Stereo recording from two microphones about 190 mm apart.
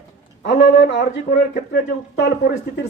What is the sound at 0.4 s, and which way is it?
A man's voice, 65° left (ahead or behind).